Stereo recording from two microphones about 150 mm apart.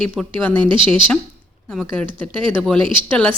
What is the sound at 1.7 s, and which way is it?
Speech, 5° left (ahead or behind).